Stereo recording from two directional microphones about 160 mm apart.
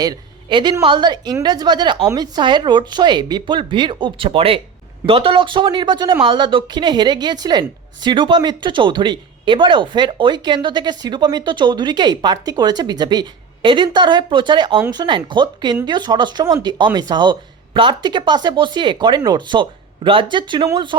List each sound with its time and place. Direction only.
0.0 s speech: 25° right (ahead or behind)